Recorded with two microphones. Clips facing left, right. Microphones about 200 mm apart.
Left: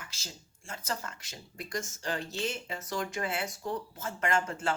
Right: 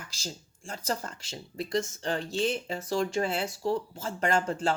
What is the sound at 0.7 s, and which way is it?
A woman's voice, 35° right (ahead or behind).